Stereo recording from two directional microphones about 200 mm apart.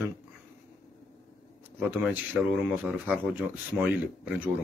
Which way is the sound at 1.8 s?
10° right (ahead or behind).